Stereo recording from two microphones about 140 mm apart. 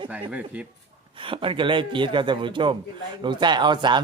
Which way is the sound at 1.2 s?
40° right (ahead or behind).